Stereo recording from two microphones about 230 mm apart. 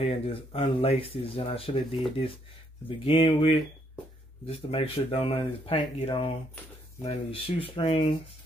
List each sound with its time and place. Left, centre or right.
0.0 s speech: left
3.1 s speech: left